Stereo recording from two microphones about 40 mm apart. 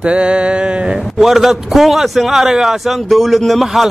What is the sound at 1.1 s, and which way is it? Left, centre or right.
A man's voice, centre.